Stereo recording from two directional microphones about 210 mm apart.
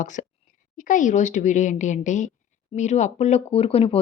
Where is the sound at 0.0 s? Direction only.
35° left (ahead or behind).